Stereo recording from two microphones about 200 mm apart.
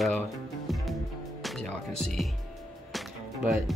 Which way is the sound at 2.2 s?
Centre (ahead or behind).